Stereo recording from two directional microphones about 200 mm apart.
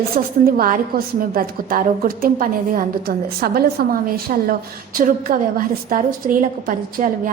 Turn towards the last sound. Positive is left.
turn(degrees=-40)  # may be behind; listen again after turning